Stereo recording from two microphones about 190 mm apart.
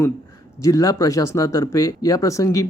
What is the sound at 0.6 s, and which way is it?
Speech, 15° left (ahead or behind).